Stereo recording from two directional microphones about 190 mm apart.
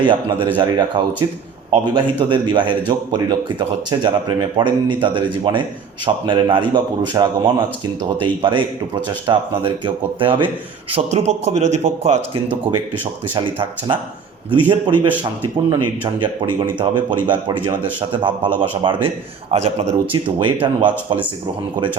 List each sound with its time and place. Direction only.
0.0 s a man's voice: 25° right (ahead or behind)
13.3 s a man's voice: 25° right (ahead or behind)